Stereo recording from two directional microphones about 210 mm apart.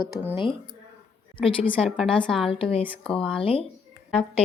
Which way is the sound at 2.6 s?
25° left (ahead or behind).